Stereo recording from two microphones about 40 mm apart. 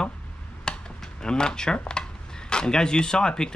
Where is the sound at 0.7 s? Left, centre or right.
Centre.